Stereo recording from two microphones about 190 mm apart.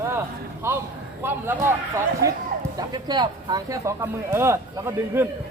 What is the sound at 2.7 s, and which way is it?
Speech, 20° right (ahead or behind).